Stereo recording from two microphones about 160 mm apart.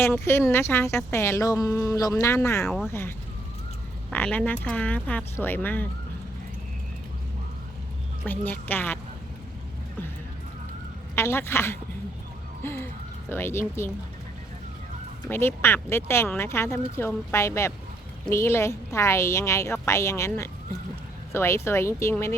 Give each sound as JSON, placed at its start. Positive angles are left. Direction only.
{"t": 0.0, "sound": "speech", "side_deg": 15}
{"t": 8.2, "sound": "speech", "side_deg": 10}
{"t": 11.1, "sound": "speech", "side_deg": 15}
{"t": 12.6, "sound": "music", "side_deg": 15}
{"t": 13.3, "sound": "speech", "side_deg": 15}
{"t": 15.3, "sound": "speech", "side_deg": 15}